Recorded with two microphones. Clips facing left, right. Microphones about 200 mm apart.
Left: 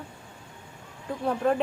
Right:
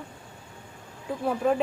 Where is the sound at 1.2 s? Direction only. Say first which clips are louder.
Even; 5° right (ahead or behind).